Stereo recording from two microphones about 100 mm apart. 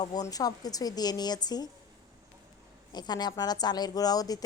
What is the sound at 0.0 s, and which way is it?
A woman's voice, 40° left (ahead or behind).